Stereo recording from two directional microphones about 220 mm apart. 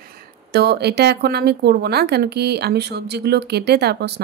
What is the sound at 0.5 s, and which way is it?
Speech, 50° right (ahead or behind).